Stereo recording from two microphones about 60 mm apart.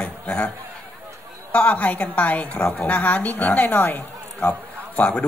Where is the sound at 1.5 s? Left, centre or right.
Left.